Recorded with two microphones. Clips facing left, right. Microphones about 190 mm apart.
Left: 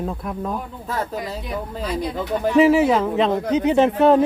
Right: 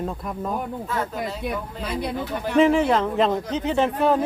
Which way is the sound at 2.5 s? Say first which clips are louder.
Left 3 dB; 5° left (ahead or behind).